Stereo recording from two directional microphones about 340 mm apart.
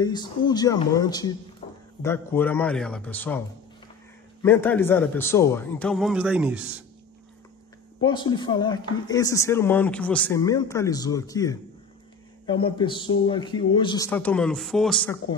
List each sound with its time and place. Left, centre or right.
0.0 s a woman's voice: centre
1.6 s a sound: centre
2.0 s a man's voice: centre
8.0 s a woman's voice: centre